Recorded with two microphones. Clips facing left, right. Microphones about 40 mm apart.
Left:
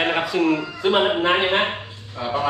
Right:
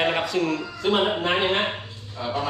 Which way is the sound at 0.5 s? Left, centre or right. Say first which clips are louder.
Left 3 dB; left.